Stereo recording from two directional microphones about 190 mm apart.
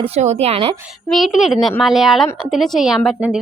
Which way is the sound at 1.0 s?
Centre (ahead or behind).